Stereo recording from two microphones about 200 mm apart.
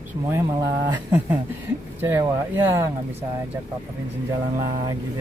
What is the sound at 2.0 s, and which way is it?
Speech, 10° right (ahead or behind).